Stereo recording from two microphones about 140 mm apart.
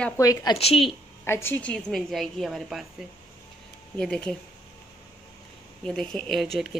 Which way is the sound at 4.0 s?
5° left (ahead or behind).